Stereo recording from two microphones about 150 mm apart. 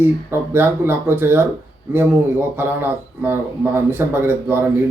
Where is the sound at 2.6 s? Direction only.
15° right (ahead or behind).